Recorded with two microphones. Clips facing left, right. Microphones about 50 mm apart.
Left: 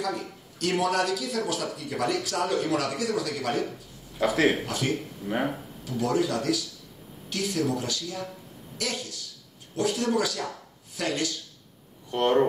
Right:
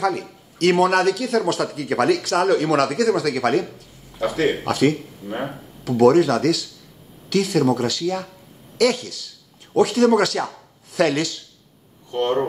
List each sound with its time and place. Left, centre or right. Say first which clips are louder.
0.0 s speech: right 8 dB; right
4.2 s speech: right 2 dB; centre
4.6 s speech: right 10 dB; right
5.3 s speech: even; centre
5.9 s speech: right 12 dB; right
7.2 s speech: right 9 dB; right
10.9 s speech: right 10 dB; right
12.1 s speech: right 1 dB; centre